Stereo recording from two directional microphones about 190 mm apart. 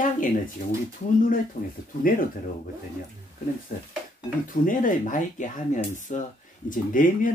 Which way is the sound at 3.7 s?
45° left (ahead or behind).